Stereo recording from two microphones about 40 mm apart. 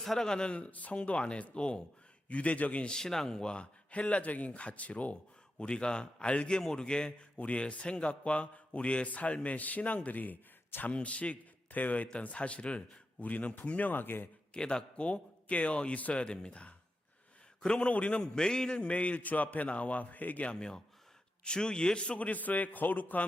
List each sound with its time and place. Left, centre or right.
0.0 s speech: centre
0.3 s a man's voice: left
0.5 s a man's voice: left
2.8 s speech: centre
3.4 s a man's voice: left
5.5 s a man's voice: left
6.6 s a man's voice: centre; by 10.3 s left
10.8 s a man's voice: left
13.9 s speech: left
14.5 s a man's voice: left
18.2 s a man's voice: centre; by 20.6 s left
20.6 s a man's voice: centre
22.3 s a man's voice: left